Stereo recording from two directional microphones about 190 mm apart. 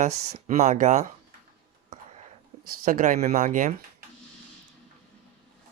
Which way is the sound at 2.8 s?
45° right (ahead or behind).